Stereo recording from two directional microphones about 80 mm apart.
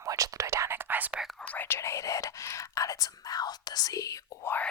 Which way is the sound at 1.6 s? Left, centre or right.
Left.